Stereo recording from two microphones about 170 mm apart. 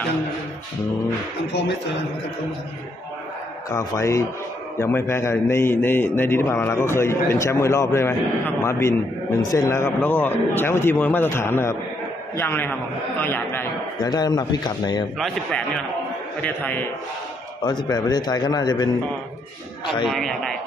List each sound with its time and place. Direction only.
3.7 s a man's voice: 15° left (ahead or behind)
13.9 s a man's voice: 25° left (ahead or behind)
15.1 s a man's voice: centre (ahead or behind)
17.6 s a man's voice: 25° left (ahead or behind)
20.1 s a man's voice: centre (ahead or behind)